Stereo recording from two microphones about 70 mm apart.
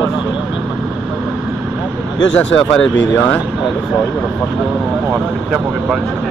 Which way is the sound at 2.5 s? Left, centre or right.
Centre.